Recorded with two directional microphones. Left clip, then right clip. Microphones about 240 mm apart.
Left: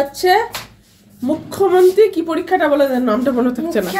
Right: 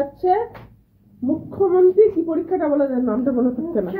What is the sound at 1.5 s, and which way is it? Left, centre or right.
A woman's voice, left.